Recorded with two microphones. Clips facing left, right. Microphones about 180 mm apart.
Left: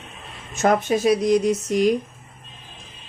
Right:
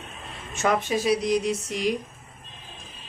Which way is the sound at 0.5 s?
40° left (ahead or behind).